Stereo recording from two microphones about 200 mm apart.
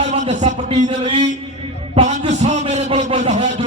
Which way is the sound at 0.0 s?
35° right (ahead or behind).